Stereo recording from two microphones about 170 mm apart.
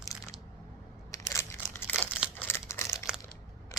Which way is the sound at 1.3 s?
15° left (ahead or behind).